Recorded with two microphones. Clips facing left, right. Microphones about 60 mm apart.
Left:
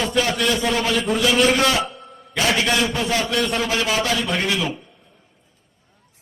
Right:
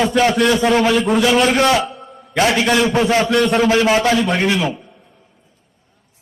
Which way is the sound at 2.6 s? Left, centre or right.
Right.